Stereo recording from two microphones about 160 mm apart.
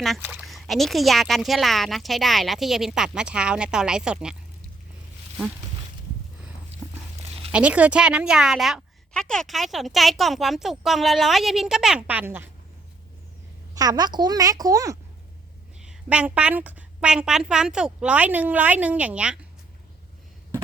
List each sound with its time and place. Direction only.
0.2 s a woman's voice: 10° right (ahead or behind)
0.4 s a woman's voice: centre (ahead or behind)
7.2 s a sound: 35° right (ahead or behind)
7.5 s a woman's voice: 10° right (ahead or behind)
13.7 s a woman's voice: 25° right (ahead or behind)
15.8 s a woman's voice: 5° right (ahead or behind)